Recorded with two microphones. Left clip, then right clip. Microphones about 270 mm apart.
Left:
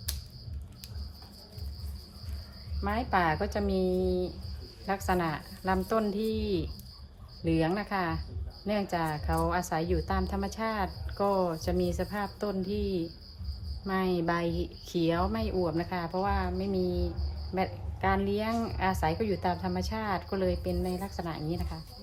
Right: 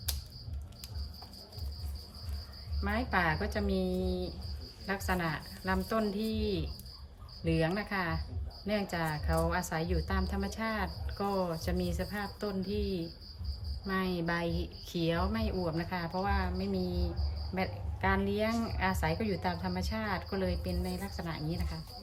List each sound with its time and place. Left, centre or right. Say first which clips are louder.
2.8 s a woman's voice: left 3 dB; centre